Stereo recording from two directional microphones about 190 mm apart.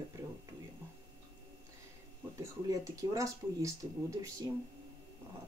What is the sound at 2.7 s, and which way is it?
Speech, 20° right (ahead or behind).